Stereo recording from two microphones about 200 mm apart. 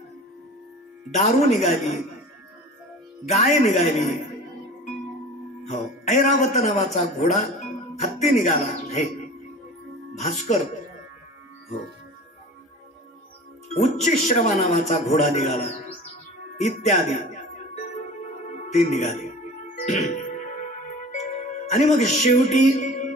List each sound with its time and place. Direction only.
1.1 s a man's voice: 35° left (ahead or behind)
3.3 s a man's voice: 35° left (ahead or behind)
5.7 s a man's voice: 35° left (ahead or behind)
10.1 s a man's voice: 35° left (ahead or behind)
13.7 s a man's voice: 40° left (ahead or behind)
18.7 s speech: 35° left (ahead or behind)
19.7 s music: 35° left (ahead or behind)